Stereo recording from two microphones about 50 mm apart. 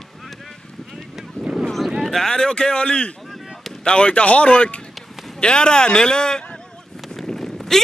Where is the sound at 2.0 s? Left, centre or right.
Centre.